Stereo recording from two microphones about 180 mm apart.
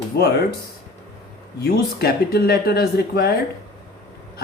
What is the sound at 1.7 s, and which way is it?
Speech, 60° left (ahead or behind).